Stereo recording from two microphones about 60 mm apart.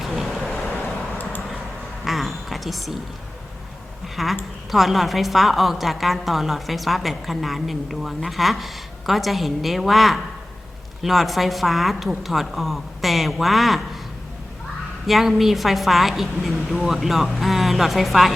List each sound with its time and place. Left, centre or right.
0.0 s vehicle: centre
2.0 s a sound: centre
4.0 s a woman's voice: centre
15.0 s a woman's voice: centre